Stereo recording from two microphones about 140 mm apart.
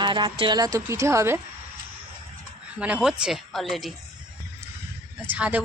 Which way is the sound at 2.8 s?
5° right (ahead or behind).